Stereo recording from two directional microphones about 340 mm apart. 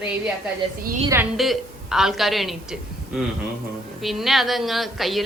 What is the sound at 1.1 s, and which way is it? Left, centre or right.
A woman's voice, centre.